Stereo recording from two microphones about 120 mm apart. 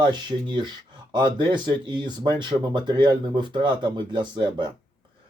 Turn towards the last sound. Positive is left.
turn(degrees=-40)  # may be behind; listen again after turning